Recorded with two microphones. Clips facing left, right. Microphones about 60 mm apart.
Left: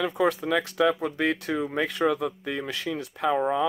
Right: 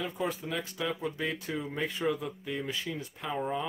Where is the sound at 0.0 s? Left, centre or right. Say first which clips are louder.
Left 9 dB; left.